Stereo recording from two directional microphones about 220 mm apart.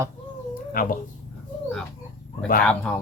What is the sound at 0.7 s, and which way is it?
Speech, 40° left (ahead or behind).